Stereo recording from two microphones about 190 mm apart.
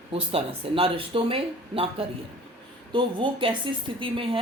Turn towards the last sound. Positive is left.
turn(degrees=-30)  # may be behind; listen again after turning